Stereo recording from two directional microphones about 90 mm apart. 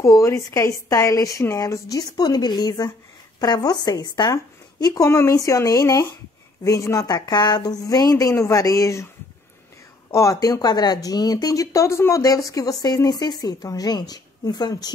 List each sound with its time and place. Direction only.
0.0 s a woman's voice: 35° left (ahead or behind)
10.1 s speech: 35° left (ahead or behind)